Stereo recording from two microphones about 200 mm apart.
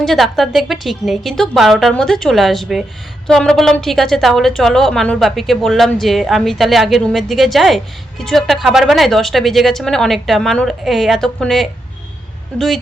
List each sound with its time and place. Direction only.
0.0 s a woman's voice: centre (ahead or behind)